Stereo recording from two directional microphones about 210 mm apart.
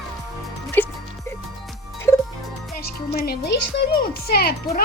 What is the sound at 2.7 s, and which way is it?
A child's voice, 45° left (ahead or behind).